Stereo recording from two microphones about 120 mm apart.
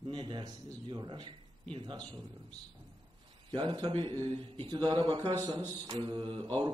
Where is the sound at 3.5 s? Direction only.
40° right (ahead or behind).